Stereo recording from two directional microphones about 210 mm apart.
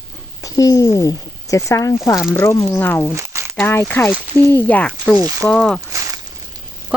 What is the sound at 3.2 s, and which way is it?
Crumpling, 15° right (ahead or behind).